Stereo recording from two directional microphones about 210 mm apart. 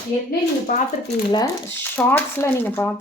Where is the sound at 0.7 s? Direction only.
45° left (ahead or behind).